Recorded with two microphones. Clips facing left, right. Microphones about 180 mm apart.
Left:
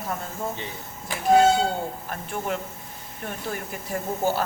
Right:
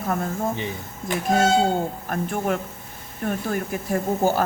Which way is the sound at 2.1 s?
50° right (ahead or behind).